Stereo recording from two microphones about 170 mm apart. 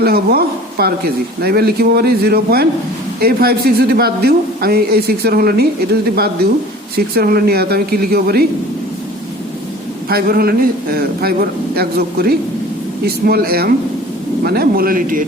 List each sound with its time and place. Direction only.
0.0 s a man's voice: 65° right (ahead or behind)
10.1 s a man's voice: 60° right (ahead or behind)